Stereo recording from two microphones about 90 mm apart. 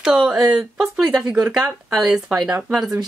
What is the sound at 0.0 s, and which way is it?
Speech, 5° right (ahead or behind).